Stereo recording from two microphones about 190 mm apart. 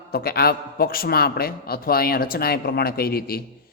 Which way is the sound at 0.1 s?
55° left (ahead or behind).